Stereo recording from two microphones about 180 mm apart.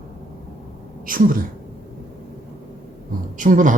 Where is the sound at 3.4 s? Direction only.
45° right (ahead or behind).